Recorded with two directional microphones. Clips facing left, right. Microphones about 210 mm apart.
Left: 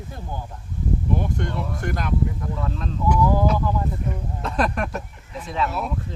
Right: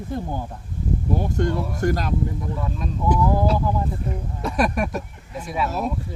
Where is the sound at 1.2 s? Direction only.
40° right (ahead or behind).